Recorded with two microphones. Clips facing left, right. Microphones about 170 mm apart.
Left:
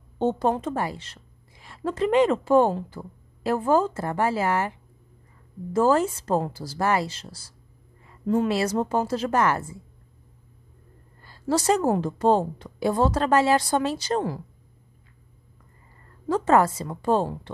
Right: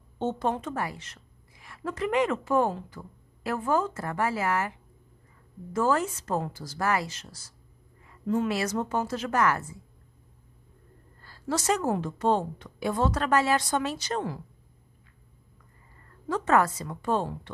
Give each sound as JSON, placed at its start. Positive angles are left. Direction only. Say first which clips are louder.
{"t": 0.2, "sound": "a woman's voice", "louder": "left 5 dB", "side_deg": 35}
{"t": 11.4, "sound": "a woman's voice", "louder": "left 5 dB", "side_deg": 30}
{"t": 16.3, "sound": "a woman's voice", "louder": "left 4 dB", "side_deg": 30}